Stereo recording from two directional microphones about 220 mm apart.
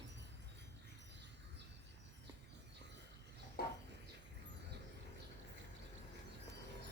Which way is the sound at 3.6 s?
45° left (ahead or behind).